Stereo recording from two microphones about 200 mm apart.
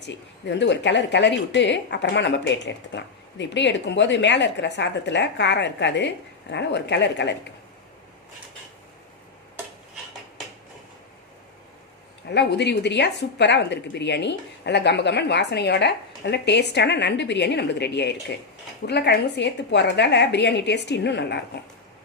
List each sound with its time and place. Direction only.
0.0 s speech: 60° left (ahead or behind)
12.3 s speech: 60° left (ahead or behind)